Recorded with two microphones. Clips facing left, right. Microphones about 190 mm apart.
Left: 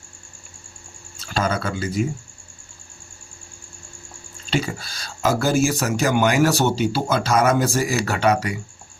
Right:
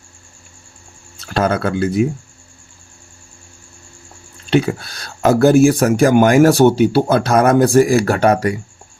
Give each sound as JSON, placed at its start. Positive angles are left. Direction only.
{"t": 1.3, "sound": "speech", "side_deg": -60}
{"t": 4.4, "sound": "speech", "side_deg": -60}